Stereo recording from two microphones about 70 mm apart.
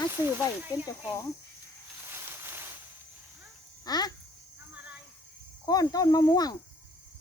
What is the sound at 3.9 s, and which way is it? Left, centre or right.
Speech, left.